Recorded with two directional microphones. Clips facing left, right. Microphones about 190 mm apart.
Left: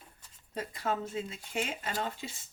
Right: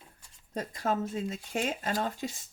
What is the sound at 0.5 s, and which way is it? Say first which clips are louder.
Speech: right 3 dB; 45° right (ahead or behind).